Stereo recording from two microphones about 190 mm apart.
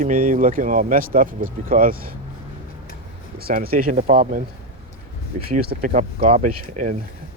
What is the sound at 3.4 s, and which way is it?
Speech, 50° right (ahead or behind).